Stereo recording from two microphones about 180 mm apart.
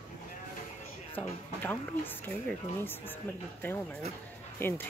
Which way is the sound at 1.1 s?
10° left (ahead or behind).